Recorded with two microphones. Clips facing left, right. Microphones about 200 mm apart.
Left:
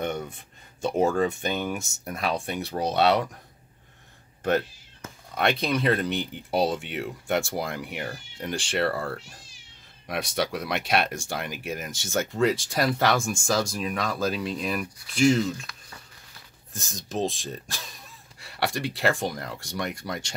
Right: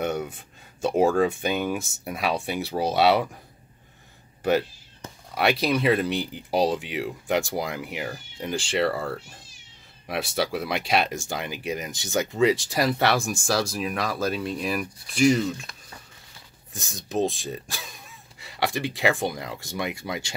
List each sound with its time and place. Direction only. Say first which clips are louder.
0.0 s a sound: right 3 dB; 10° right (ahead or behind)
0.8 s speech: right 3 dB; 5° right (ahead or behind)
4.4 s speech: right 2 dB; 5° right (ahead or behind)
16.7 s speech: right 4 dB; centre (ahead or behind)